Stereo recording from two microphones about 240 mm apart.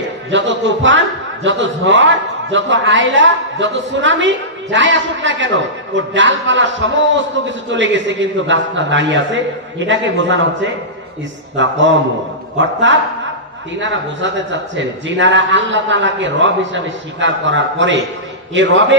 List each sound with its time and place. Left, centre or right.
0.3 s a man's voice: right